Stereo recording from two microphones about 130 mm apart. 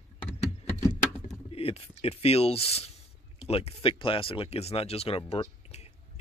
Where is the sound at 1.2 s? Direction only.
50° left (ahead or behind).